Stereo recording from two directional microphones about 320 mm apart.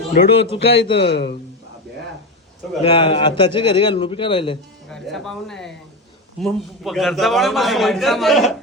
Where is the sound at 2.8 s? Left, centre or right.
Centre.